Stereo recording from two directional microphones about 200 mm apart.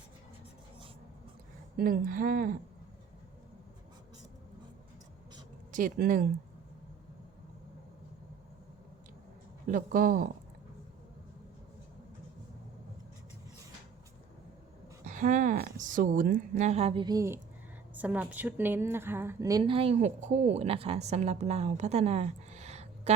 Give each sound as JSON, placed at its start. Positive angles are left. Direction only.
{"t": 1.7, "sound": "speech", "side_deg": -45}
{"t": 5.7, "sound": "speech", "side_deg": -40}
{"t": 9.6, "sound": "speech", "side_deg": -40}
{"t": 15.0, "sound": "a woman's voice", "side_deg": -40}